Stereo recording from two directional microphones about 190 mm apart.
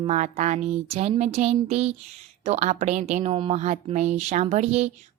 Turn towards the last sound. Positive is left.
turn(degrees=-35)  # may be behind; listen again after turning